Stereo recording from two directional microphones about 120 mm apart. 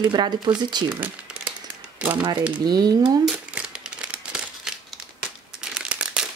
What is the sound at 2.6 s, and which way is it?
Speech, 35° right (ahead or behind).